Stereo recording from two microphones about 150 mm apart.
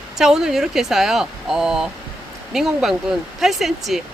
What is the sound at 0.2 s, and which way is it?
Speech, 5° right (ahead or behind).